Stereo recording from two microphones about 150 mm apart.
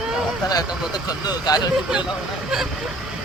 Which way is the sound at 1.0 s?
25° left (ahead or behind).